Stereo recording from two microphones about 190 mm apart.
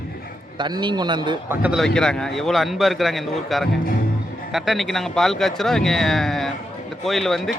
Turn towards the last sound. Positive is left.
turn(degrees=0)  # may be behind; listen again after turning